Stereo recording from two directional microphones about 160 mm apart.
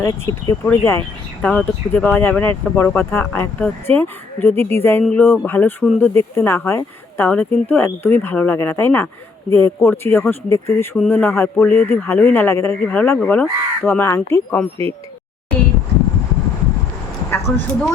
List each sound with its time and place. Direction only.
0.0 s speech: 20° left (ahead or behind)
0.6 s speech: 10° left (ahead or behind)
17.3 s speech: 15° left (ahead or behind)